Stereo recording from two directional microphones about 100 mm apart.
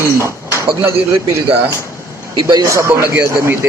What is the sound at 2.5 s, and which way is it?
Speech, 30° right (ahead or behind).